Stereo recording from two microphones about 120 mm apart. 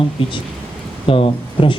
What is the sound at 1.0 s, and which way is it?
Speech, 50° left (ahead or behind).